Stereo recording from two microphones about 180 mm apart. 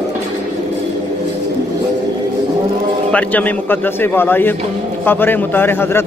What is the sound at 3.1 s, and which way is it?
A woman's voice, 10° left (ahead or behind).